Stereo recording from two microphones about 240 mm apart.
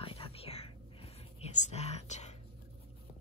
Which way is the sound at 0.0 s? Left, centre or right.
Left.